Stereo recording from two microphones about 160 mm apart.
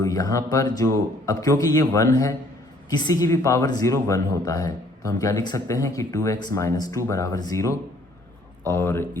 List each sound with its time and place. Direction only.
0.0 s speech: 20° left (ahead or behind)